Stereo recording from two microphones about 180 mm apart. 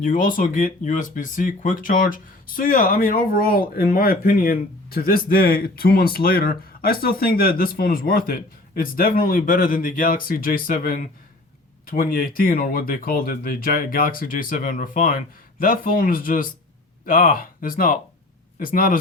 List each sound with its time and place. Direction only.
0.0 s speech: 50° left (ahead or behind)